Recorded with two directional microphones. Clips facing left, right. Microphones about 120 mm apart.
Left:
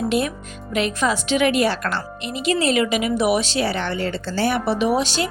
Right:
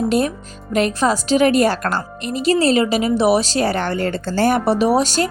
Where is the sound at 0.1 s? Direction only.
40° right (ahead or behind).